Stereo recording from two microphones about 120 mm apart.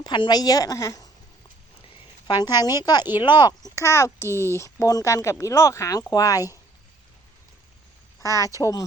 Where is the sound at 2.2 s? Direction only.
35° left (ahead or behind).